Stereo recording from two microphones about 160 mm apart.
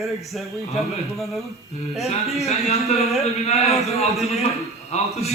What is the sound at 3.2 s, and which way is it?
Speech, 40° left (ahead or behind).